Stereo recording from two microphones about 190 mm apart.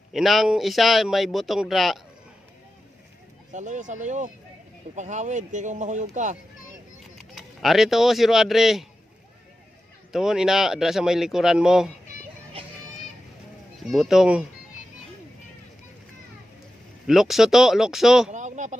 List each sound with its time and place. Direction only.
0.1 s a man's voice: centre (ahead or behind)
3.5 s speech: 40° right (ahead or behind)
7.3 s a man's voice: centre (ahead or behind)
10.1 s a man's voice: centre (ahead or behind)
13.9 s a man's voice: centre (ahead or behind)
17.1 s a man's voice: centre (ahead or behind)
18.3 s a sound: 40° right (ahead or behind)